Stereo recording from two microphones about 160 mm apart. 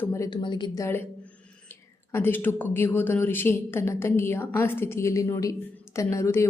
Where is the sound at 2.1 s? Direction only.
15° left (ahead or behind).